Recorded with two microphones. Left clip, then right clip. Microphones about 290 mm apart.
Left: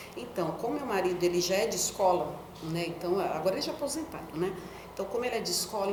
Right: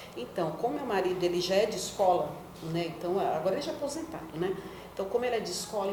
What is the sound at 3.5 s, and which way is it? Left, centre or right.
A woman's voice, right.